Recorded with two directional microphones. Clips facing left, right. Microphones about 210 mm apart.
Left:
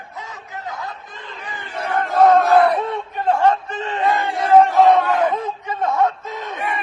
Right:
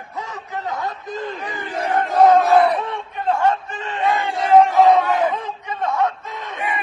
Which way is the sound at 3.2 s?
35° left (ahead or behind).